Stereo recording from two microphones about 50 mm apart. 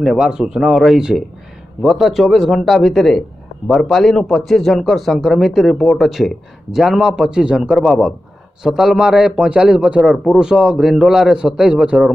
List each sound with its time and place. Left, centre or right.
0.2 s a man's voice: centre
6.0 s a man's voice: centre; by 10.1 s right
10.1 s a man's voice: centre